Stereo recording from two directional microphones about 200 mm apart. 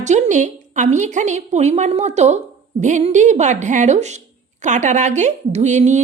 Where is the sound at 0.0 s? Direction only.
35° right (ahead or behind).